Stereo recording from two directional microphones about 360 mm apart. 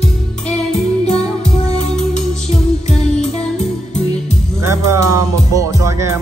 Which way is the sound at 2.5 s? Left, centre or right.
Centre.